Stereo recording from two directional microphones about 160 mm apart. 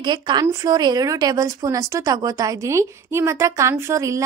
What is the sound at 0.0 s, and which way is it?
Speech, 25° right (ahead or behind).